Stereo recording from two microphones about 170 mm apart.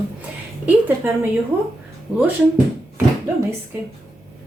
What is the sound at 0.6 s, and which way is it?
A woman's voice, 10° right (ahead or behind).